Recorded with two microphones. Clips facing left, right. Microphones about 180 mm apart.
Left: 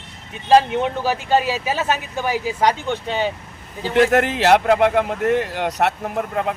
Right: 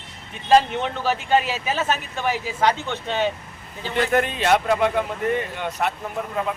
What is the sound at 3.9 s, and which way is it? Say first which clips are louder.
Speech: left 5 dB; 85° left.